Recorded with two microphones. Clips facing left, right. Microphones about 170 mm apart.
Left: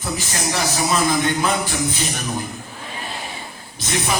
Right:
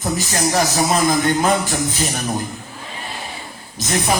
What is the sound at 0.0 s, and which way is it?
Speech, 40° right (ahead or behind).